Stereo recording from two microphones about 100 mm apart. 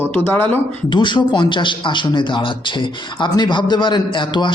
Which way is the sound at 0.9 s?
50° left (ahead or behind).